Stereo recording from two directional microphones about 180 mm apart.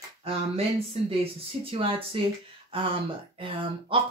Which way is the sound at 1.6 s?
30° right (ahead or behind).